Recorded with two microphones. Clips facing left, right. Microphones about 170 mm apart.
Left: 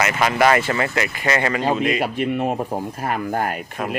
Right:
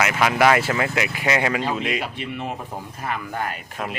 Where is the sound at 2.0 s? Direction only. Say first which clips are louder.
Left 8 dB; 50° left (ahead or behind).